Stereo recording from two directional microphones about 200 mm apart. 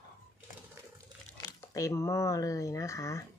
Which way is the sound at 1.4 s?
15° left (ahead or behind).